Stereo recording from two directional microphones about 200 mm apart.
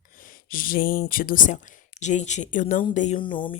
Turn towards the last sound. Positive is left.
turn(degrees=25)  # may be behind; listen again after turning